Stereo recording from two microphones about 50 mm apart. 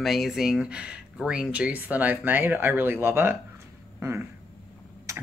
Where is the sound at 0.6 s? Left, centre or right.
Right.